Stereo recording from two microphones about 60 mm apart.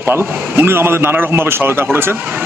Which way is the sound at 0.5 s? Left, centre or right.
Right.